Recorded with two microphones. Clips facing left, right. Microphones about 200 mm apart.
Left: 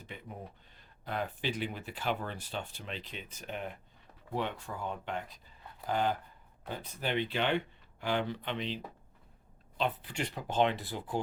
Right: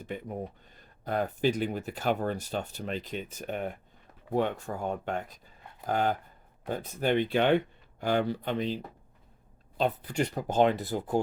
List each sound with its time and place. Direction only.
0.0 s speech: 45° right (ahead or behind)